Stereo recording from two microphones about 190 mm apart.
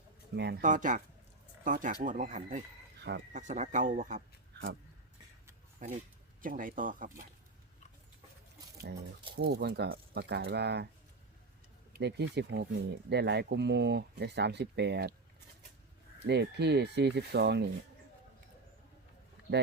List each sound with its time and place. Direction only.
0.3 s speech: 60° right (ahead or behind)
0.6 s speech: 40° right (ahead or behind)
3.0 s speech: 60° right (ahead or behind)
3.3 s speech: 40° right (ahead or behind)
5.8 s speech: 40° right (ahead or behind)
9.3 s speech: 60° right (ahead or behind)
11.9 s speech: 60° right (ahead or behind)
16.2 s speech: 65° right (ahead or behind)